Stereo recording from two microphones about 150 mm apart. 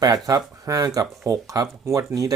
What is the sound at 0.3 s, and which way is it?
Speech, 20° right (ahead or behind).